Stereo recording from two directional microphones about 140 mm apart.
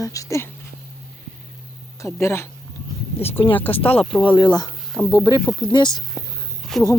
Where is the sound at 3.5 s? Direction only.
10° left (ahead or behind).